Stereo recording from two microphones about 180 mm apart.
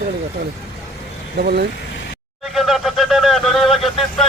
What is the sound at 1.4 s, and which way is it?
Speech, 65° right (ahead or behind).